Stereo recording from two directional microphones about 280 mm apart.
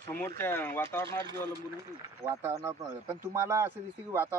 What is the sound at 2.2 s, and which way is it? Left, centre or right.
Speech, centre.